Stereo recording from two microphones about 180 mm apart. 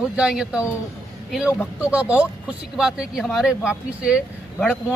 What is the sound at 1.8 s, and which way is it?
A man's voice, 5° right (ahead or behind).